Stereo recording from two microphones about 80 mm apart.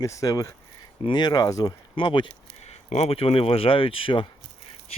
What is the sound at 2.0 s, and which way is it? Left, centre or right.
Speech, left.